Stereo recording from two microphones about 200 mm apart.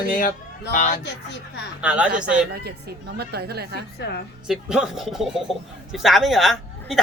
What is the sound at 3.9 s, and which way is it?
Speech, 55° left (ahead or behind).